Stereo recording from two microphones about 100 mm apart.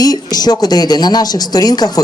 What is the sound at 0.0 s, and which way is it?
Speech, 40° left (ahead or behind).